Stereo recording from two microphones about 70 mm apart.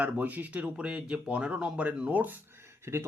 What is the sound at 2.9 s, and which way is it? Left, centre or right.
Speech, right.